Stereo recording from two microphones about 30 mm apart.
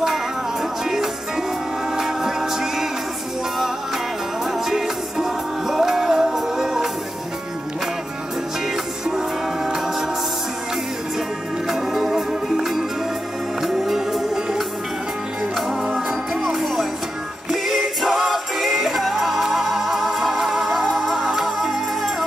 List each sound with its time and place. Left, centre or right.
0.1 s music: centre
4.5 s music: centre
11.6 s music: centre
15.7 s music: centre
16.1 s music: centre